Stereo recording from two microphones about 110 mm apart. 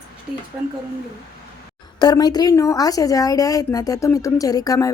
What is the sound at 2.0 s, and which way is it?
A woman's voice, 40° left (ahead or behind).